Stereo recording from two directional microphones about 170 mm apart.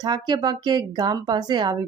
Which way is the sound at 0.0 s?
25° right (ahead or behind).